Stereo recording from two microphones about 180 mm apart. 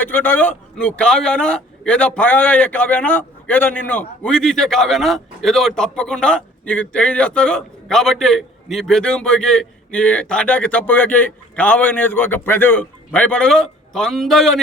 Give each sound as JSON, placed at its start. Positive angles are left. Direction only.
{"t": 0.0, "sound": "a man's voice", "side_deg": 10}